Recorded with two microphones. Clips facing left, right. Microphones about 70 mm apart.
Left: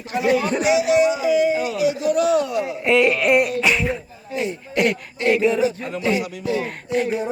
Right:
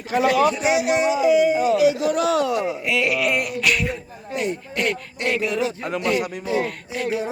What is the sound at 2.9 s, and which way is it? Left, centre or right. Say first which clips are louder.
Speech: left 9 dB; left.